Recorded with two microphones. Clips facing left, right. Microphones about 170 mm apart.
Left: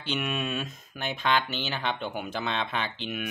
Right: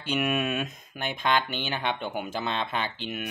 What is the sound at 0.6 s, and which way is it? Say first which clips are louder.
Speech: right 2 dB; 50° right (ahead or behind).